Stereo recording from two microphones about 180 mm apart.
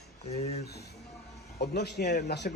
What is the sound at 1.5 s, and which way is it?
Speech, 65° left (ahead or behind).